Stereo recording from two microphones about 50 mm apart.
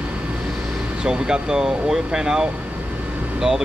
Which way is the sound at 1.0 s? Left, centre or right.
Centre.